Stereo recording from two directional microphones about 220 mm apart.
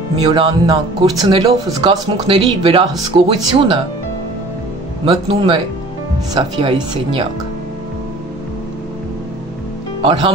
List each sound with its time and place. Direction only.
0.2 s speech: 25° right (ahead or behind)
5.0 s speech: 25° right (ahead or behind)
10.0 s speech: 25° right (ahead or behind)